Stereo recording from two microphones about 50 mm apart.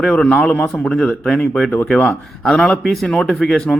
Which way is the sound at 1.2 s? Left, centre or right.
Centre.